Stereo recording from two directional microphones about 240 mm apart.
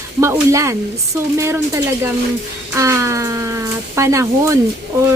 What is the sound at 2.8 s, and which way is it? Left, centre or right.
Speech, centre.